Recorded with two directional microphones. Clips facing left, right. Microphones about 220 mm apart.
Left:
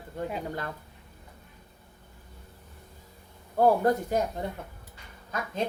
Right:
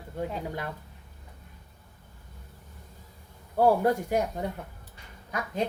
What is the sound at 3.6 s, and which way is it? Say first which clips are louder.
Speech: even; 10° right (ahead or behind).